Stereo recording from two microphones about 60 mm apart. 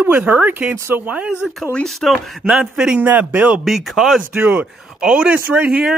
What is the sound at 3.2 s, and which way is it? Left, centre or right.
Speech, centre.